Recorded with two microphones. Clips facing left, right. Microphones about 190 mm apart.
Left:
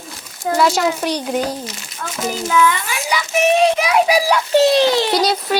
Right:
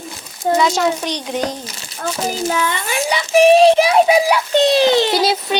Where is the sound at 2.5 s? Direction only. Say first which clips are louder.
Left 3 dB; 30° right (ahead or behind).